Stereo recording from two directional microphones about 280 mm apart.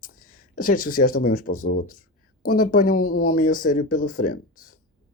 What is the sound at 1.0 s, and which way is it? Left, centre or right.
Speech, left.